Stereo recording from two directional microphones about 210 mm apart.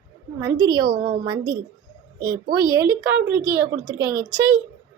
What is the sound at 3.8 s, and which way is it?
Speech, 20° left (ahead or behind).